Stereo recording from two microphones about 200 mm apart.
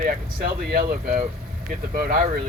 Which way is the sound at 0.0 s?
45° right (ahead or behind).